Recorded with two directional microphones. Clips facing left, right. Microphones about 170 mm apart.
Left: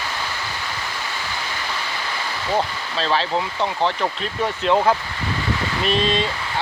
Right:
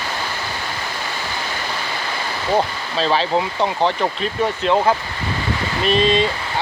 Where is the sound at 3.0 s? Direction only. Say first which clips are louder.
Right 3 dB; 5° right (ahead or behind).